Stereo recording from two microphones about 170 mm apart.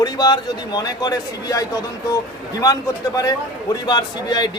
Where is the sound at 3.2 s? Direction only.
20° left (ahead or behind).